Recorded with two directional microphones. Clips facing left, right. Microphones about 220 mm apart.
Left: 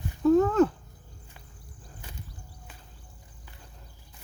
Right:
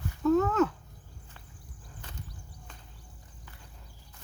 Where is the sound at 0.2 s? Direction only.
30° left (ahead or behind).